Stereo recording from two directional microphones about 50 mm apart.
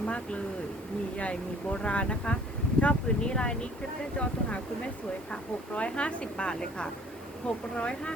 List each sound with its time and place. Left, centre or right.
0.0 s speech: left